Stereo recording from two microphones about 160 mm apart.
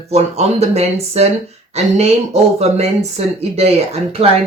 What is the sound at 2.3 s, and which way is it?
Speech, 40° right (ahead or behind).